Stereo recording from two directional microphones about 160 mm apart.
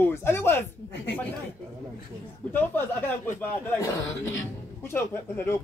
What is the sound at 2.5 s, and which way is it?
Speech, 10° left (ahead or behind).